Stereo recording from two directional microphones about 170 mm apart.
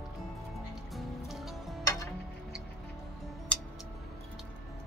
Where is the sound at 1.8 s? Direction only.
20° left (ahead or behind).